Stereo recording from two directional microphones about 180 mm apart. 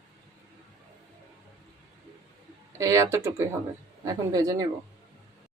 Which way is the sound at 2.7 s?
15° right (ahead or behind).